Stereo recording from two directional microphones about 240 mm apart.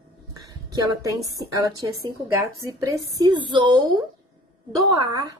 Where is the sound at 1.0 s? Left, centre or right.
Centre.